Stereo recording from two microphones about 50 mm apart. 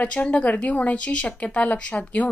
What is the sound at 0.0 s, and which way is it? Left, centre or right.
Speech, left.